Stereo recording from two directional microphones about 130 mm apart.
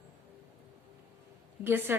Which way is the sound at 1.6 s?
15° right (ahead or behind).